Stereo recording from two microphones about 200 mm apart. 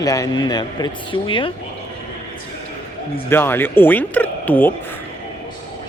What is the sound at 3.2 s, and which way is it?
Speech, 10° left (ahead or behind).